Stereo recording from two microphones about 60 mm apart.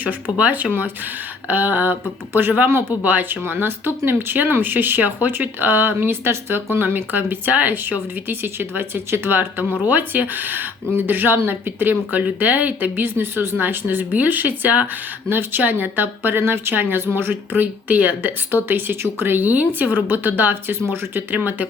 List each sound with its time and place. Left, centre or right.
0.0 s speech: right
21.3 s speech: right